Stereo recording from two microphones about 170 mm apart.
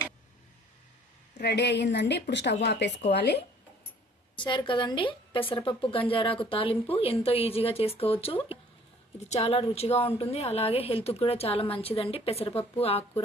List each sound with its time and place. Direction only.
1.4 s speech: 75° left (ahead or behind)
4.4 s a woman's voice: 30° left (ahead or behind)